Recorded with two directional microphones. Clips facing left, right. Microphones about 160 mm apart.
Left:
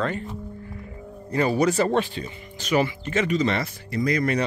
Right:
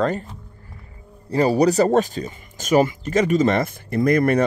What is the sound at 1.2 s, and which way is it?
Speech, 35° right (ahead or behind).